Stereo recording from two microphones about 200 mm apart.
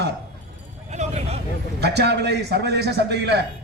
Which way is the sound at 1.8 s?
55° right (ahead or behind).